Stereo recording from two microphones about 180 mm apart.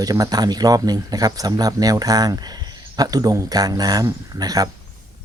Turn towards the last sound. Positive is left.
turn(degrees=-20)  # may be behind; listen again after turning